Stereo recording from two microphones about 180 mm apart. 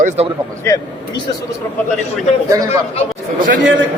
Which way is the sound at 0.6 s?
20° left (ahead or behind).